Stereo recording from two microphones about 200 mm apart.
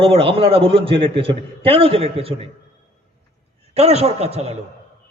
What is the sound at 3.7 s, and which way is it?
Speech, 30° right (ahead or behind).